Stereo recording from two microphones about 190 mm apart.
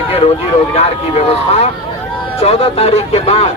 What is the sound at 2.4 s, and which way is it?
Speech, 30° left (ahead or behind).